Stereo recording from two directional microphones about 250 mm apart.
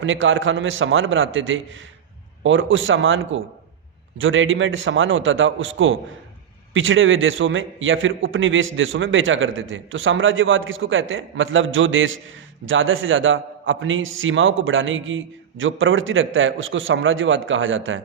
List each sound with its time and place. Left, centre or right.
0.0 s a man's voice: right